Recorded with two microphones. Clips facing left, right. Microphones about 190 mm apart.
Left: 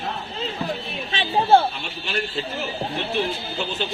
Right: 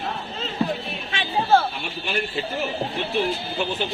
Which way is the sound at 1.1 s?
25° left (ahead or behind).